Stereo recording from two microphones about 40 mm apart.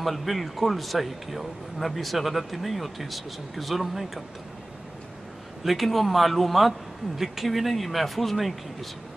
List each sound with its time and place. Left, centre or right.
0.0 s a man's voice: centre
5.6 s a man's voice: centre